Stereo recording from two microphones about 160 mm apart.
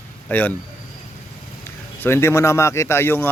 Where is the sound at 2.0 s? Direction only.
15° left (ahead or behind).